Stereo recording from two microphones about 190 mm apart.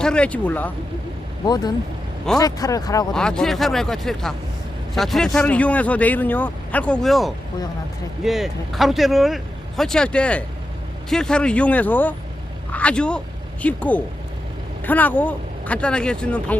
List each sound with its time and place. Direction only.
0.0 s speech: 5° left (ahead or behind)
1.5 s a man's voice: 20° left (ahead or behind)
3.1 s speech: 5° left (ahead or behind)